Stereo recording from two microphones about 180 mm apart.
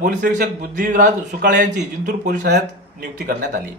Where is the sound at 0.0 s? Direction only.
45° right (ahead or behind).